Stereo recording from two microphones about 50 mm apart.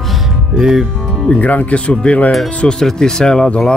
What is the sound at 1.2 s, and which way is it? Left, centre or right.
Speech, left.